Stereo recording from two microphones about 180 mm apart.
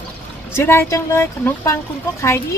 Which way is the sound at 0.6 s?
15° left (ahead or behind).